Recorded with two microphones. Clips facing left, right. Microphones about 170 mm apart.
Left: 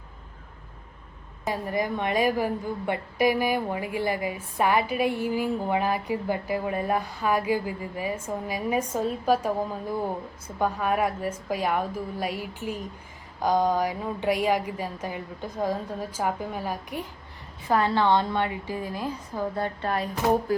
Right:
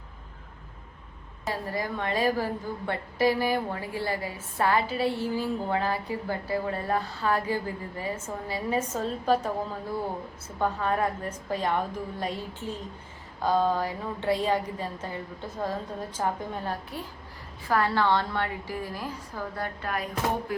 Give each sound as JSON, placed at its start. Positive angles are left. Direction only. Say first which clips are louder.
{"t": 1.5, "sound": "a woman's voice", "louder": "left 4 dB", "side_deg": 20}